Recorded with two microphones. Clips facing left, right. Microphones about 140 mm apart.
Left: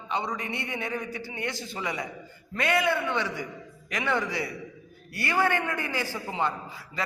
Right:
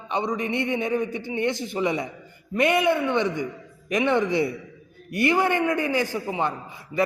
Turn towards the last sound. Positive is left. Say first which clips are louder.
# right 2 dB
turn(degrees=-20)  # may be behind; listen again after turning